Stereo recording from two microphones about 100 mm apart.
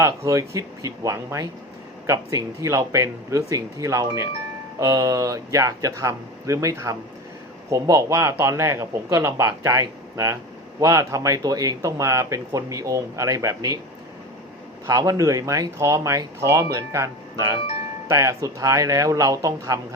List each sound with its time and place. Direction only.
0.0 s speech: 30° right (ahead or behind)
14.8 s speech: 35° right (ahead or behind)